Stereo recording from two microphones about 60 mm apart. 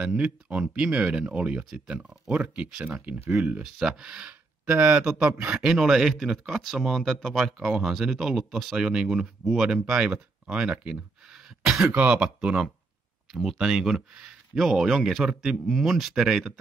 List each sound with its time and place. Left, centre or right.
0.0 s speech: right
3.6 s speech: centre
5.6 s speech: centre
10.6 s throat clearing: centre
11.9 s speech: right
12.4 s speech: centre
13.3 s speech: centre